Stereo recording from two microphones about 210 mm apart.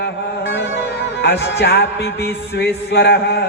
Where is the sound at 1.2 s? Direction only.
55° left (ahead or behind).